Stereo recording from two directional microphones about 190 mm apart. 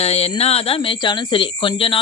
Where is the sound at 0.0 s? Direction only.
35° left (ahead or behind).